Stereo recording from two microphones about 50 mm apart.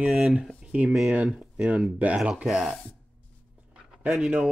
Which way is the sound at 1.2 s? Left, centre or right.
Centre.